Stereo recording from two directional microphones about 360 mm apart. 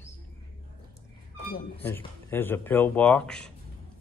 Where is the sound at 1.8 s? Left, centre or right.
Centre.